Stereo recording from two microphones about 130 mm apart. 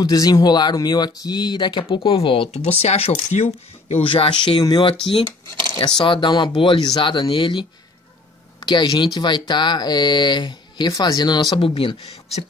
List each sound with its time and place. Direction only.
0.0 s speech: 30° left (ahead or behind); by 2.5 s 45° left (ahead or behind)
2.5 s speech: 55° left (ahead or behind)
3.9 s speech: 45° left (ahead or behind)
5.9 s speech: 35° left (ahead or behind)
8.6 s speech: 35° left (ahead or behind)